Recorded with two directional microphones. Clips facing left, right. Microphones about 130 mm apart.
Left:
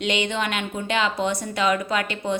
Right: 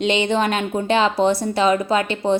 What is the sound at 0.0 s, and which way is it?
A woman's voice, 30° right (ahead or behind).